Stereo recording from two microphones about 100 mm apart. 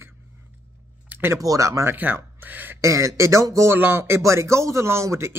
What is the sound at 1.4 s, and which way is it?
Speech, 35° right (ahead or behind).